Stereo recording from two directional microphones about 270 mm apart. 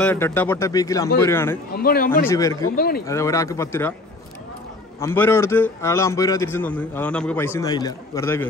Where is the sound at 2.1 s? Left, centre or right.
Centre.